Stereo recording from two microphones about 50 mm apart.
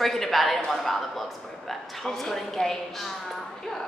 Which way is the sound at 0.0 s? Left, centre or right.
Centre.